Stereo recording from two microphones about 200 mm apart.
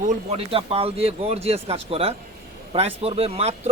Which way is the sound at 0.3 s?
30° right (ahead or behind).